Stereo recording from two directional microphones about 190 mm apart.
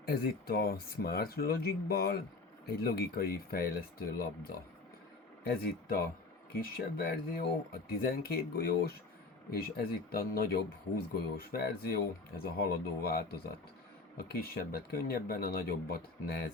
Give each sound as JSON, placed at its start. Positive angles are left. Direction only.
{"t": 0.0, "sound": "speech", "side_deg": 50}